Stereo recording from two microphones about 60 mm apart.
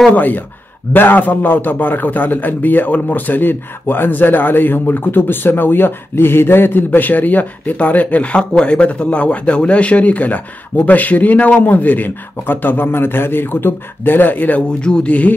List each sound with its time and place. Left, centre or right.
0.1 s a man's voice: left
14.8 s speech: centre